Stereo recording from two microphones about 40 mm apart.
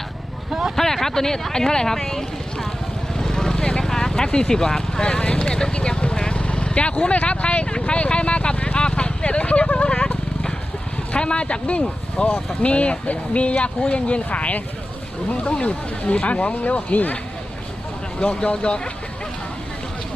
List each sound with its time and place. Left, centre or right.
0.8 s speech: centre
3.2 s vehicle: centre
7.2 s speech: left
11.1 s speech: left
18.2 s speech: left